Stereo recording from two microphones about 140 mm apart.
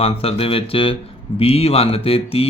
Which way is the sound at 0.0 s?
45° left (ahead or behind).